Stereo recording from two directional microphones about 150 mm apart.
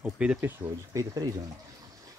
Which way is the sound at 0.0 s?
10° right (ahead or behind).